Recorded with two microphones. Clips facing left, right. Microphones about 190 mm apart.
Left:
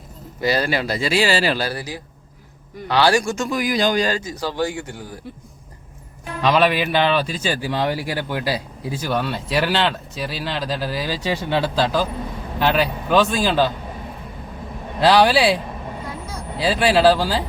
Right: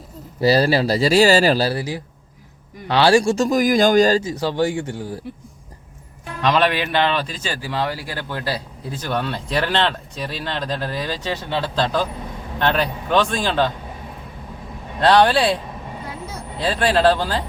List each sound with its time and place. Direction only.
0.3 s speech: 35° right (ahead or behind)
4.2 s speech: 25° right (ahead or behind)
6.4 s a man's voice: 5° left (ahead or behind)
15.0 s speech: 5° left (ahead or behind)